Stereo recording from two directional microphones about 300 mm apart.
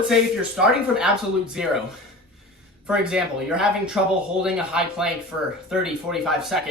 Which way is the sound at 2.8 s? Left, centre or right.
Centre.